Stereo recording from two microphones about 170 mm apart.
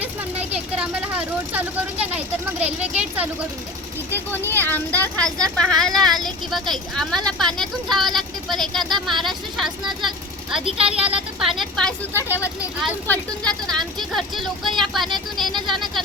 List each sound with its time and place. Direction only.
0.0 s vehicle: 10° right (ahead or behind)
1.5 s speech: 10° right (ahead or behind)
4.1 s speech: 10° left (ahead or behind)
4.7 s speech: 15° right (ahead or behind)
5.0 s speech: 5° left (ahead or behind)
10.7 s speech: 35° right (ahead or behind)
10.9 s speech: 5° right (ahead or behind)